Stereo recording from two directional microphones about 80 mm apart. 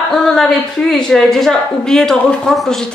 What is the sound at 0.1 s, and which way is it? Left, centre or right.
A woman's voice, centre.